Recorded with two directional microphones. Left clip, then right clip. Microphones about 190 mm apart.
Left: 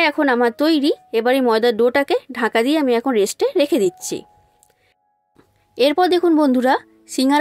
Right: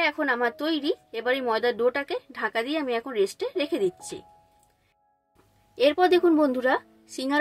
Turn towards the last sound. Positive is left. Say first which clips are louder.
# left 12 dB
turn(degrees=50)  # may be behind; listen again after turning